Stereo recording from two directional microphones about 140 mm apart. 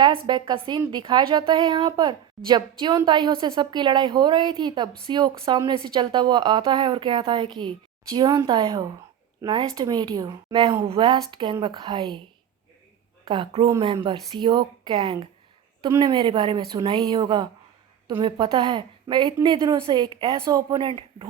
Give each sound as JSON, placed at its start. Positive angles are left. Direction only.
{"t": 0.3, "sound": "a woman's voice", "side_deg": -30}
{"t": 13.2, "sound": "a woman's voice", "side_deg": -35}